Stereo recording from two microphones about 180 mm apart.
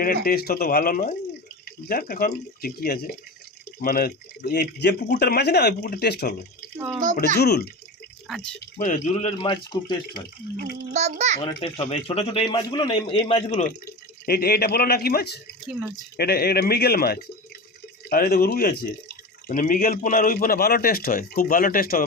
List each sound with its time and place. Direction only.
0.0 s speech: 55° left (ahead or behind)
8.8 s a man's voice: 40° left (ahead or behind)
9.6 s speech: 60° left (ahead or behind)
10.9 s a child's voice: 40° right (ahead or behind)
11.4 s a man's voice: 30° left (ahead or behind)
14.3 s speech: 60° left (ahead or behind)